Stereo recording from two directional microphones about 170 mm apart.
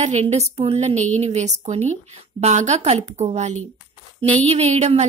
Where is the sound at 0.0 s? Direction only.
40° right (ahead or behind).